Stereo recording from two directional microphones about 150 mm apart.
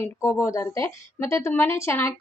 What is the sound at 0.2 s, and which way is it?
Speech, 20° left (ahead or behind).